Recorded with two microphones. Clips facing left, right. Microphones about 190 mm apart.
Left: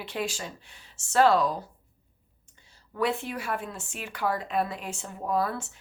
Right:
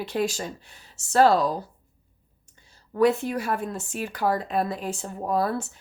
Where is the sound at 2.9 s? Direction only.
40° right (ahead or behind).